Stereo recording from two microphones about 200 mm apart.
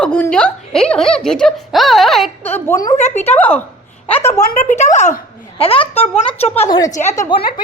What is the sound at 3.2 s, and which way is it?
Speech, 10° left (ahead or behind).